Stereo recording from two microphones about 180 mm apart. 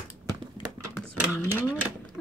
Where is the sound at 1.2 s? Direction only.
10° right (ahead or behind).